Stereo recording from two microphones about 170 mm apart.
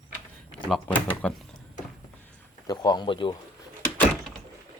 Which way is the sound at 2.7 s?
25° left (ahead or behind).